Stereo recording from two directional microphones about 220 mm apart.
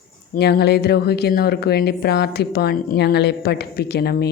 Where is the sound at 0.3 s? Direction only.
45° left (ahead or behind).